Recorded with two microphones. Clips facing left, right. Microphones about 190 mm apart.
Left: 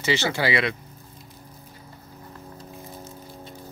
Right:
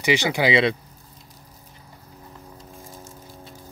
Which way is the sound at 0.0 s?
15° right (ahead or behind).